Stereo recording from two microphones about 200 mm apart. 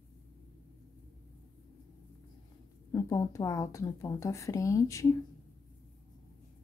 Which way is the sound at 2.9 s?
15° left (ahead or behind).